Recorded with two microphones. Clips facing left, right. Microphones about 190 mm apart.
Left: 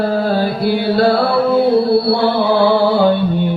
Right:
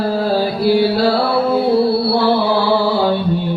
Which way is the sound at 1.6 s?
55° left (ahead or behind).